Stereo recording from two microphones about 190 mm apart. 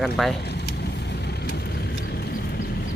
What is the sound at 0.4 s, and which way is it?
Vehicle, 60° left (ahead or behind).